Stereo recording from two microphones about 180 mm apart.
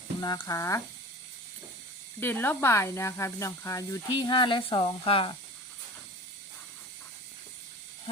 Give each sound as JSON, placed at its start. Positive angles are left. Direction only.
{"t": 0.2, "sound": "speech", "side_deg": 25}
{"t": 2.2, "sound": "speech", "side_deg": 10}